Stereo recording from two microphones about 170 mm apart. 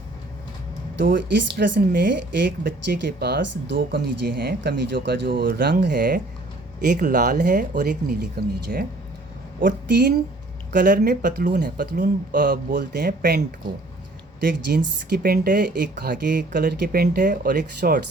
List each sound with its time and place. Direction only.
0.9 s speech: 90° right
1.5 s a woman's voice: 80° right
2.0 s a woman's voice: 90° right; by 13.4 s 60° right (ahead or behind)
14.4 s speech: 60° right (ahead or behind)